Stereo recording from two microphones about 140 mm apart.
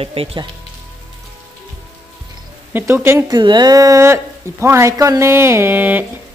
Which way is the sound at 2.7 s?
15° right (ahead or behind).